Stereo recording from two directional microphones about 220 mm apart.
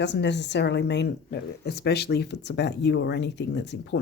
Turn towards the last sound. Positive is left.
turn(degrees=50)  # may be behind; listen again after turning